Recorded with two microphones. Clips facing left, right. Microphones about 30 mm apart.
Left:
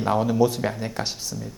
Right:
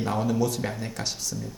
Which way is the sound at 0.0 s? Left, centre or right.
Centre.